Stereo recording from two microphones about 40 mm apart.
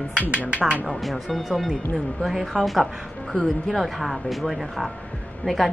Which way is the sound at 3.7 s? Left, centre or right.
Centre.